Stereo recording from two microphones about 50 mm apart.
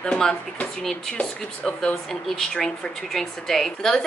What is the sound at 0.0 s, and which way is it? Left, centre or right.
Speech, left.